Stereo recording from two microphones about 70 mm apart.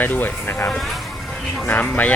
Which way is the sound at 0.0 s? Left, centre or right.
Left.